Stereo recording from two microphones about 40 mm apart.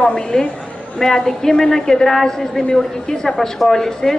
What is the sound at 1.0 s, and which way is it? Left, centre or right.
A woman's voice, centre.